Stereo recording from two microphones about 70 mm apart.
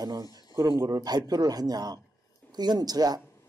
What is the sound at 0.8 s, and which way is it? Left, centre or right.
Speech, right.